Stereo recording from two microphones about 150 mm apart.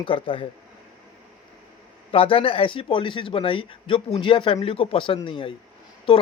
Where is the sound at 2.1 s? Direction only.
40° left (ahead or behind).